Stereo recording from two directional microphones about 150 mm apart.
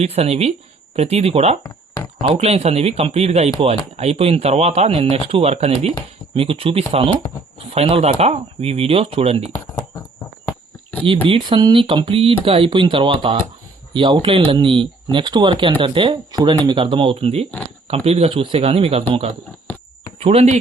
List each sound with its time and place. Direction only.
0.0 s speech: 45° right (ahead or behind)
1.6 s a sound: 20° left (ahead or behind)
2.2 s speech: 40° right (ahead or behind)
10.9 s a sound: 10° left (ahead or behind)
11.3 s speech: 35° right (ahead or behind)
20.1 s speech: 40° right (ahead or behind)